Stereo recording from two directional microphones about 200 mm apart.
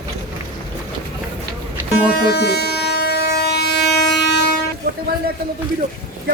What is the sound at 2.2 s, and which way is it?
Train, 55° left (ahead or behind).